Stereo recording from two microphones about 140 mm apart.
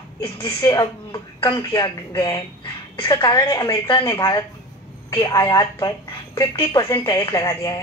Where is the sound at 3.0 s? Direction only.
25° left (ahead or behind).